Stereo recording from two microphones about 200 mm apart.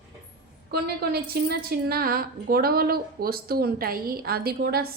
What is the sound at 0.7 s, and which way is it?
A woman's voice, 50° right (ahead or behind).